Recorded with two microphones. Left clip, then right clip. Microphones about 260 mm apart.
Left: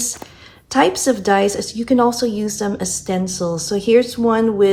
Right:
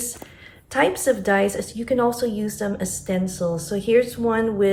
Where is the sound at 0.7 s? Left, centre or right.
Centre.